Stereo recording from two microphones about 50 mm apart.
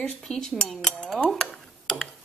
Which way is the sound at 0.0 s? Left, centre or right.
Centre.